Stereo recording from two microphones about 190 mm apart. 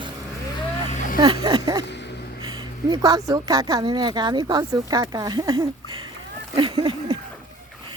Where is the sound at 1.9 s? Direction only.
65° left (ahead or behind).